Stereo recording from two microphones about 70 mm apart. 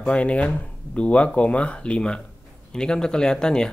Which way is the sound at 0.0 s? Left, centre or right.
Centre.